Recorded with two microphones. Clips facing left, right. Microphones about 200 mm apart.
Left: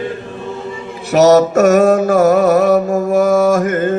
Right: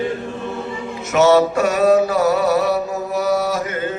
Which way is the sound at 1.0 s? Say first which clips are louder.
Left 4 dB; 40° left (ahead or behind).